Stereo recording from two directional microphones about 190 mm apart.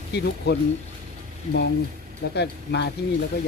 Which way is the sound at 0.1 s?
60° left (ahead or behind).